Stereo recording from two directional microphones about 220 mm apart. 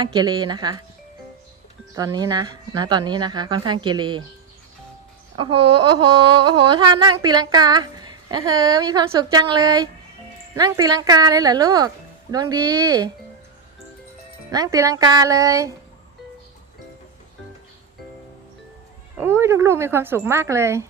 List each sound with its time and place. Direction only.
0.0 s a woman's voice: 20° right (ahead or behind)
2.0 s a woman's voice: 15° right (ahead or behind)
5.5 s a sound: 90° right
6.7 s a woman's voice: 20° right (ahead or behind)
14.5 s a woman's voice: 15° right (ahead or behind)
19.2 s a woman's voice: 10° right (ahead or behind)